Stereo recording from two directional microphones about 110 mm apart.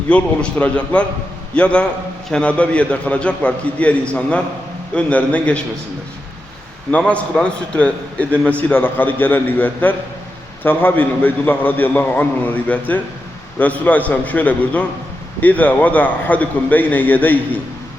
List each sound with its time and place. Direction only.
0.1 s a man's voice: 10° left (ahead or behind)
6.9 s a man's voice: 10° left (ahead or behind)